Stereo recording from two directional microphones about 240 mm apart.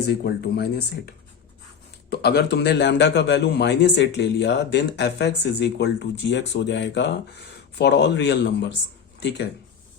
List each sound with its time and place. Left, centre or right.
0.1 s a man's voice: left